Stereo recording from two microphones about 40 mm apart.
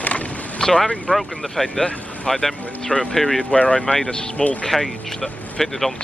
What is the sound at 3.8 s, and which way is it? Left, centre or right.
Speech, centre.